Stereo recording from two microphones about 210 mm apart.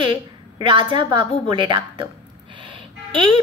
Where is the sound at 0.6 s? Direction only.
25° right (ahead or behind).